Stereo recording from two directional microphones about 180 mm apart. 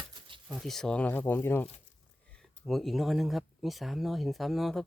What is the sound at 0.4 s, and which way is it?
Speech, centre (ahead or behind).